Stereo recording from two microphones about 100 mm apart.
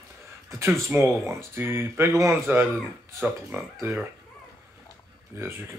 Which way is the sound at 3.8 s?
20° right (ahead or behind).